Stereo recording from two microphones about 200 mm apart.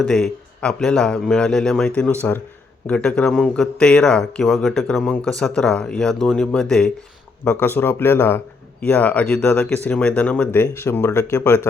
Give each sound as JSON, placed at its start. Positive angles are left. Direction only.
{"t": 0.0, "sound": "speech", "side_deg": 0}